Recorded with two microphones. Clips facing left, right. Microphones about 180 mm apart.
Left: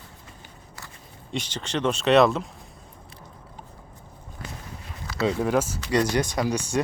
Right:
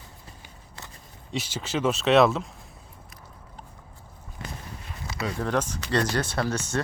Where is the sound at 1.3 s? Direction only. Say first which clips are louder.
Even; 5° right (ahead or behind).